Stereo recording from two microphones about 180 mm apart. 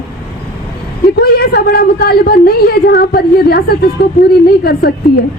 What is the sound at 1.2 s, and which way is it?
A woman's voice, 60° left (ahead or behind).